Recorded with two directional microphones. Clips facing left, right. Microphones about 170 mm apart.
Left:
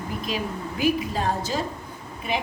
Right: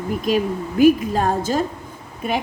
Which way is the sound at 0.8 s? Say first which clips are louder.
Right 9 dB; 50° right (ahead or behind).